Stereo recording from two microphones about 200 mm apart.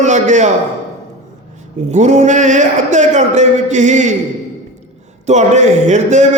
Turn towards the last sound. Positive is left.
turn(degrees=-35)  # may be behind; listen again after turning